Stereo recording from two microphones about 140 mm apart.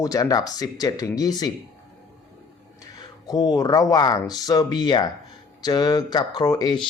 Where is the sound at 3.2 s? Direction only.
30° left (ahead or behind).